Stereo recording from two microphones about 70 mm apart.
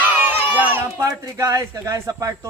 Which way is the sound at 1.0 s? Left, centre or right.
Right.